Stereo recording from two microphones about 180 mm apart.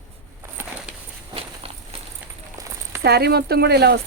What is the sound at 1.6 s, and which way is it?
Walk, 30° right (ahead or behind).